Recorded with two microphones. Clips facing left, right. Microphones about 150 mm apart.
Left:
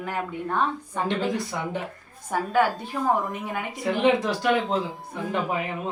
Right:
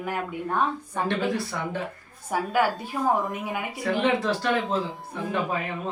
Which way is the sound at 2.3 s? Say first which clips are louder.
Left 1 dB; 10° right (ahead or behind).